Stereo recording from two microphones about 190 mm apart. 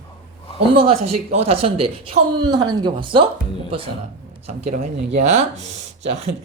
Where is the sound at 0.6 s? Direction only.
30° right (ahead or behind).